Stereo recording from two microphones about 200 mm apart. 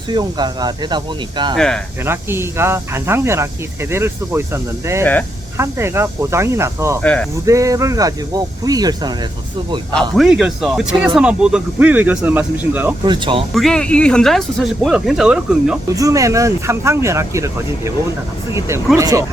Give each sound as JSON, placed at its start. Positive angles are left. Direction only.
{"t": 0.1, "sound": "speech", "side_deg": -20}
{"t": 1.5, "sound": "speech", "side_deg": 5}
{"t": 2.0, "sound": "speech", "side_deg": -10}
{"t": 7.0, "sound": "speech", "side_deg": 5}
{"t": 7.4, "sound": "speech", "side_deg": -15}
{"t": 9.9, "sound": "speech", "side_deg": 0}
{"t": 13.1, "sound": "speech", "side_deg": -25}
{"t": 13.5, "sound": "speech", "side_deg": 0}
{"t": 16.0, "sound": "speech", "side_deg": -15}
{"t": 18.9, "sound": "speech", "side_deg": -15}